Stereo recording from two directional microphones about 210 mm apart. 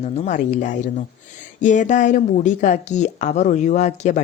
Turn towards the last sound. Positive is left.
turn(degrees=35)  # may be behind; listen again after turning